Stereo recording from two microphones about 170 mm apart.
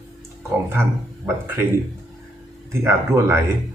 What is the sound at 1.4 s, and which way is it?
Speech, 15° right (ahead or behind).